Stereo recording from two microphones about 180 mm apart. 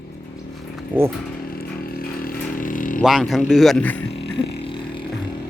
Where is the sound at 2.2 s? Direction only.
50° left (ahead or behind).